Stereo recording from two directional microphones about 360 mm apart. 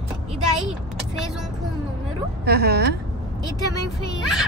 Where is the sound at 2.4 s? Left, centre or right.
Right.